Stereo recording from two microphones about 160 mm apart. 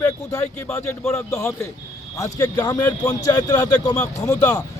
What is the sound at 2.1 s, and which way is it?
A man's voice, 20° left (ahead or behind).